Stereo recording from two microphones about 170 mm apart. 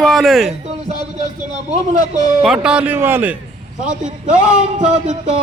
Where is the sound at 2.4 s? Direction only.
5° right (ahead or behind).